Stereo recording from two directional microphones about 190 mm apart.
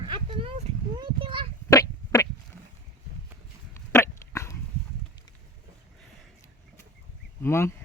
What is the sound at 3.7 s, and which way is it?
Dog, 15° left (ahead or behind).